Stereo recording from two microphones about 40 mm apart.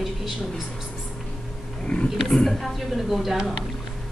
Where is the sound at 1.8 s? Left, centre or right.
Left.